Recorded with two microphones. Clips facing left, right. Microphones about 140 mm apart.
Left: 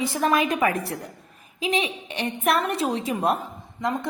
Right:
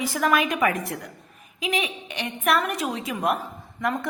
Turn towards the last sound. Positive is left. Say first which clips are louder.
# even
turn(degrees=20)  # may be behind; listen again after turning